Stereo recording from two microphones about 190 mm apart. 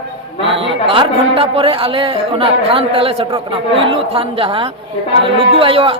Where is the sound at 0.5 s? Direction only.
30° right (ahead or behind).